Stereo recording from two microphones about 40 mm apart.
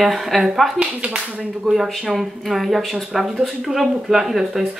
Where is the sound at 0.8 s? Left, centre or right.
Right.